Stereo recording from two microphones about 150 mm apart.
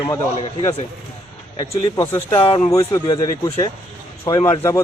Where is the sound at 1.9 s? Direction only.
15° left (ahead or behind).